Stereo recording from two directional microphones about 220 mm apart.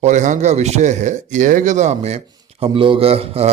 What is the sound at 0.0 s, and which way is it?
A man's voice, 35° right (ahead or behind).